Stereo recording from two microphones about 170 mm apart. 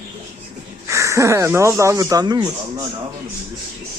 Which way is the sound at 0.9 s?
15° right (ahead or behind).